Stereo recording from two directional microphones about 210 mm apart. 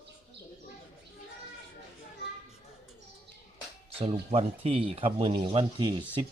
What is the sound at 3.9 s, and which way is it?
Speech, 25° right (ahead or behind).